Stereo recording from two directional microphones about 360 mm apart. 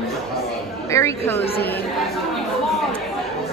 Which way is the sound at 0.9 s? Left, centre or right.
Centre.